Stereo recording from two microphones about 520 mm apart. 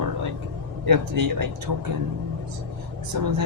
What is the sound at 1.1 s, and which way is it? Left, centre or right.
Speech, right.